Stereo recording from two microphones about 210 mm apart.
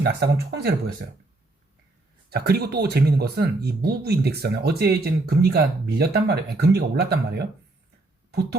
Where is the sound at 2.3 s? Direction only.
50° right (ahead or behind).